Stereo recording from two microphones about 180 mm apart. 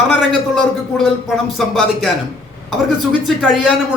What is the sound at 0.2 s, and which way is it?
Speech, centre (ahead or behind).